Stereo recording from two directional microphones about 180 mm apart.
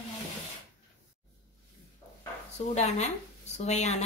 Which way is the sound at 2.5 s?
40° left (ahead or behind).